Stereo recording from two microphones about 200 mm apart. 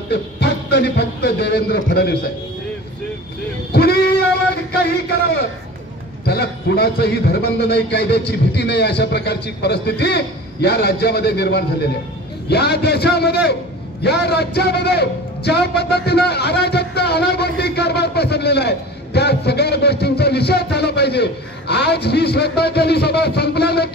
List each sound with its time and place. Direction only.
0.1 s music: 55° left (ahead or behind)
3.7 s a sound: 50° left (ahead or behind)
6.2 s a man's voice: 55° left (ahead or behind)